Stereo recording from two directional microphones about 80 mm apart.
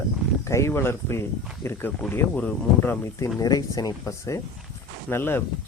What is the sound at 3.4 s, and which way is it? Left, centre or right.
Speech, left.